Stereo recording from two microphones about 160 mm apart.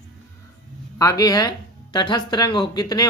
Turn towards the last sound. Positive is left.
turn(degrees=25)  # may be behind; listen again after turning